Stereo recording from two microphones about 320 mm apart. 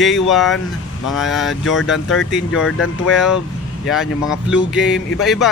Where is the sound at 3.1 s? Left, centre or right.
Centre.